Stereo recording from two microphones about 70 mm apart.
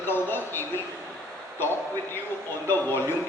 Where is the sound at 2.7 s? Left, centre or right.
Left.